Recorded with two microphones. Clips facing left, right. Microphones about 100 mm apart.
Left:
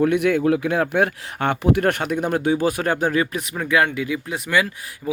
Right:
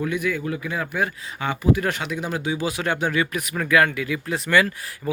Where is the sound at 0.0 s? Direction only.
65° left (ahead or behind); by 3.5 s 30° left (ahead or behind).